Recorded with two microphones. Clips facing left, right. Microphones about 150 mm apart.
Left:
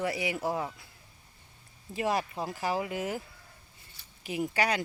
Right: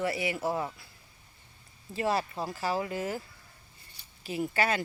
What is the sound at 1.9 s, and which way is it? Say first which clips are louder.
Speech: even; 15° left (ahead or behind).